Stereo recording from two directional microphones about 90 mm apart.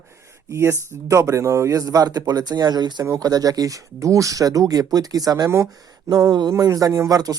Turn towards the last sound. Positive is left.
turn(degrees=-40)  # may be behind; listen again after turning